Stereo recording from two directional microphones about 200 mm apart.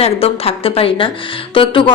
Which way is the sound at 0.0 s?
30° left (ahead or behind).